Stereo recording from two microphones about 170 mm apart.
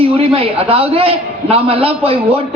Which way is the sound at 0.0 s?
35° right (ahead or behind).